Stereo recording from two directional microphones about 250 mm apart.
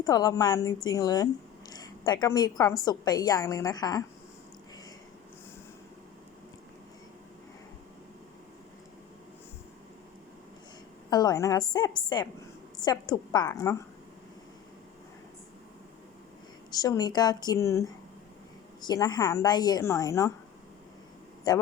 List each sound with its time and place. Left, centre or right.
0.0 s a woman's voice: centre
11.1 s a woman's voice: centre
16.7 s a woman's voice: centre
21.5 s a woman's voice: centre